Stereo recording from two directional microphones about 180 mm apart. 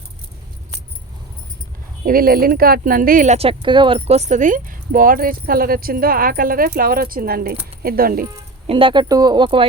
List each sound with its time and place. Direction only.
2.0 s speech: 55° right (ahead or behind)
3.3 s speech: 30° right (ahead or behind); by 8.3 s 55° right (ahead or behind)
8.6 s speech: 30° right (ahead or behind)